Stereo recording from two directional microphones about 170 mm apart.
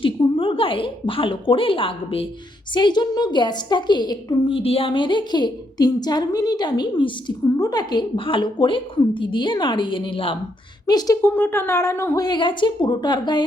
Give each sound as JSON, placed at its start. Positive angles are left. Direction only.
{"t": 0.0, "sound": "a woman's voice", "side_deg": 30}